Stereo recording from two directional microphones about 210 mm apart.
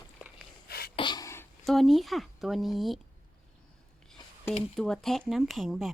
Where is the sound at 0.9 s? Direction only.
20° left (ahead or behind).